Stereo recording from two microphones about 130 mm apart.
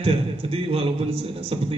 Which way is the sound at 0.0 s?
45° right (ahead or behind).